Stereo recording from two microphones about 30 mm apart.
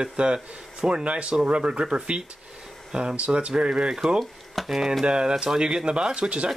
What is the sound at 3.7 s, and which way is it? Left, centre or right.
Speech, centre.